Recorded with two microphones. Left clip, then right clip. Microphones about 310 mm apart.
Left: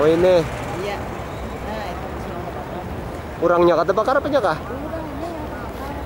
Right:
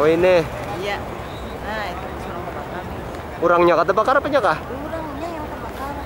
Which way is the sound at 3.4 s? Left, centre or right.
Centre.